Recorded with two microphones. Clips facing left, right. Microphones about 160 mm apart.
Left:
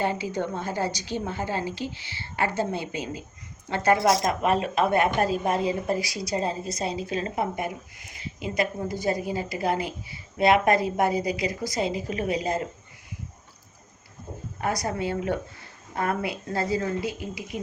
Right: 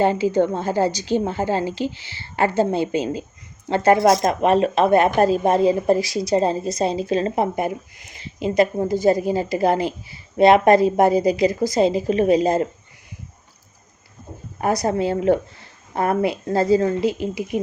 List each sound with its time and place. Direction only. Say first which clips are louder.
0.0 s a woman's voice: right 9 dB; 30° right (ahead or behind)
4.0 s speech: right 6 dB; 45° right (ahead or behind)
4.3 s a woman's voice: right 7 dB; 30° right (ahead or behind)
14.6 s a woman's voice: right 8 dB; 30° right (ahead or behind)